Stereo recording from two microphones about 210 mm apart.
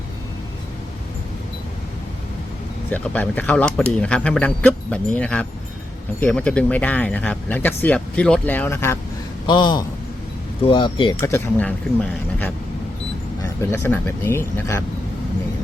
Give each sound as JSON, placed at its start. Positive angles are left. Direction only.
{"t": 2.9, "sound": "speech", "side_deg": 5}
{"t": 11.2, "sound": "speech", "side_deg": 10}
{"t": 13.4, "sound": "speech", "side_deg": 10}